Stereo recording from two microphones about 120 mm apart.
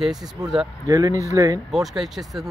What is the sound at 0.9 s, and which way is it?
Speech, 30° right (ahead or behind).